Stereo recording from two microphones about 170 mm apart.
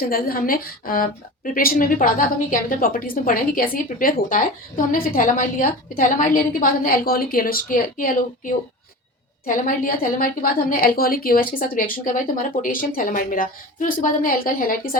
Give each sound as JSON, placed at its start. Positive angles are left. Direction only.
{"t": 0.0, "sound": "a woman's voice", "side_deg": 60}